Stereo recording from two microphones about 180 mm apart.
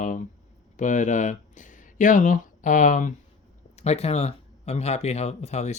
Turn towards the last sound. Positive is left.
turn(degrees=35)  # may be behind; listen again after turning